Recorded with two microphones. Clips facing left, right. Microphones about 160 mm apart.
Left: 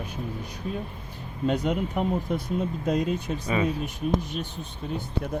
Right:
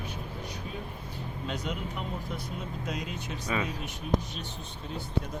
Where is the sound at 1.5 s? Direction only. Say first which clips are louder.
Left 10 dB; 50° left (ahead or behind).